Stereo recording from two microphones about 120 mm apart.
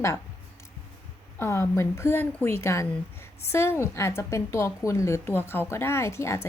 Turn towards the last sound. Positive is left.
turn(degrees=25)  # may be behind; listen again after turning